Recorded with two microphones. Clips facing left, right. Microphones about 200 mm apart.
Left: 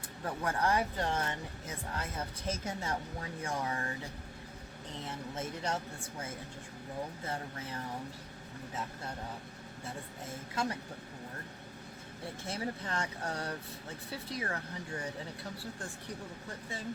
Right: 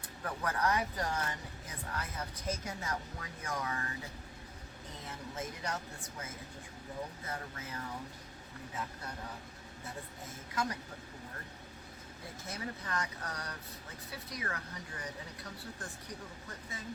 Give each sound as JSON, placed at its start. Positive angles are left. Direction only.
{"t": 0.4, "sound": "speech", "side_deg": 30}
{"t": 5.4, "sound": "speech", "side_deg": 30}
{"t": 7.3, "sound": "speech", "side_deg": 30}
{"t": 10.5, "sound": "speech", "side_deg": 30}
{"t": 12.5, "sound": "speech", "side_deg": 30}